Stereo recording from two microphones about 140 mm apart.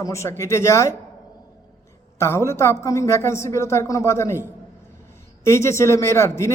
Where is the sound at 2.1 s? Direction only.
20° left (ahead or behind).